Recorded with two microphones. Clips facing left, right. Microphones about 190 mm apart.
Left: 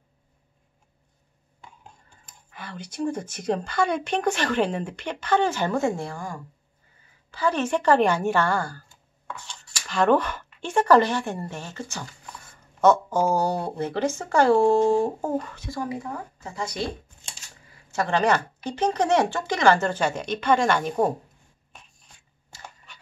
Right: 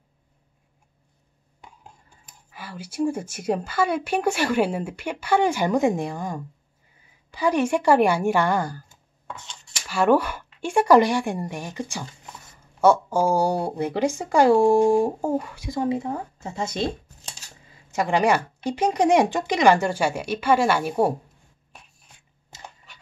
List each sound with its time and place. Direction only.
2.2 s a woman's voice: 5° right (ahead or behind)
9.8 s speech: 10° right (ahead or behind)
12.8 s speech: 10° right (ahead or behind)
15.8 s speech: 25° right (ahead or behind)
22.5 s a sound: 20° right (ahead or behind)